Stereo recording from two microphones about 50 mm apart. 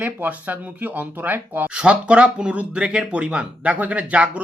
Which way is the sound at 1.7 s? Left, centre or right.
Right.